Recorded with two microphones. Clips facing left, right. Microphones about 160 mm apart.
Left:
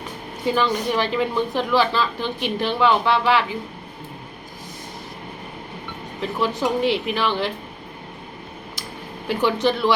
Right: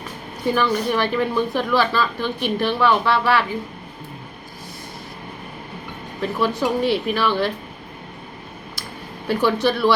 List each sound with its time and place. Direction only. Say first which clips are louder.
0.4 s a woman's voice: right 1 dB; 20° left (ahead or behind)
6.4 s a woman's voice: right 1 dB; 20° left (ahead or behind)
9.2 s a woman's voice: right 1 dB; 20° left (ahead or behind)